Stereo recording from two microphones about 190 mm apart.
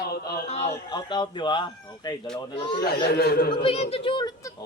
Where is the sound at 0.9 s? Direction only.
25° left (ahead or behind).